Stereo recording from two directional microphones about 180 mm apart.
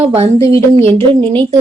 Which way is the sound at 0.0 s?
35° right (ahead or behind).